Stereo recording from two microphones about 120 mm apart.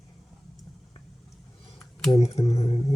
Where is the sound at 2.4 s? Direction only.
35° left (ahead or behind).